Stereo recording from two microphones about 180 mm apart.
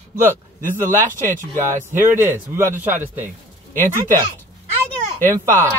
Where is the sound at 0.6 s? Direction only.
45° right (ahead or behind).